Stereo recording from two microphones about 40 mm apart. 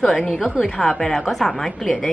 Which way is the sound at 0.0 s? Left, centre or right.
Centre.